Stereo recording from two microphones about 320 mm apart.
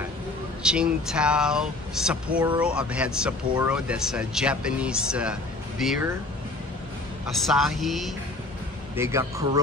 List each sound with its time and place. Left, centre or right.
0.6 s speech: centre
7.2 s a man's voice: centre